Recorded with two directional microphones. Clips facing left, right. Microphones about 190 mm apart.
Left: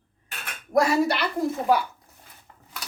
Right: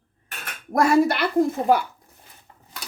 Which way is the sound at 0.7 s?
55° right (ahead or behind).